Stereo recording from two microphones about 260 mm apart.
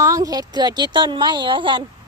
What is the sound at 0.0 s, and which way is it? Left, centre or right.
A woman's voice, centre.